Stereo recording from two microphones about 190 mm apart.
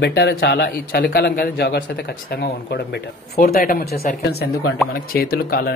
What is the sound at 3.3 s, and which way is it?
Speech, 50° left (ahead or behind).